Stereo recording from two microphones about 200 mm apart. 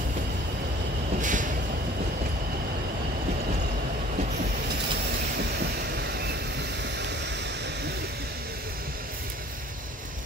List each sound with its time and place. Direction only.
1.2 s vehicle: 40° right (ahead or behind)
5.9 s train: 55° right (ahead or behind)
6.8 s a sound: 60° right (ahead or behind)